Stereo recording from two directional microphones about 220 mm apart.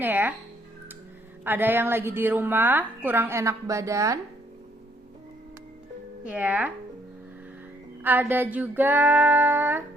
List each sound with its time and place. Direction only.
0.0 s a woman's voice: 10° right (ahead or behind)
1.5 s a woman's voice: 10° right (ahead or behind)
6.2 s a woman's voice: 5° right (ahead or behind)
8.0 s a woman's voice: 10° right (ahead or behind)